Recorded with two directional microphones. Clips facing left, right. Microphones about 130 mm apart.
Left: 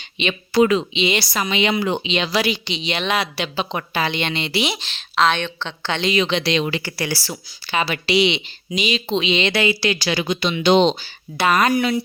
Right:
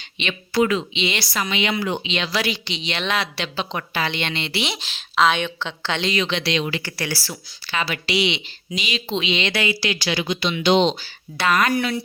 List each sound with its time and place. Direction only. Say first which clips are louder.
0.2 s speech: left 4 dB; 20° left (ahead or behind)
4.8 s a woman's voice: even; 5° right (ahead or behind)
6.1 s speech: left 3 dB; 20° left (ahead or behind)
6.8 s speech: left 3 dB; 10° left (ahead or behind); by 10.9 s 40° left (ahead or behind)
11.0 s speech: left 3 dB; 20° left (ahead or behind)